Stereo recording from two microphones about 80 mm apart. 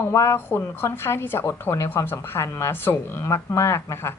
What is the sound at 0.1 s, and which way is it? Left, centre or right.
A woman's voice, left.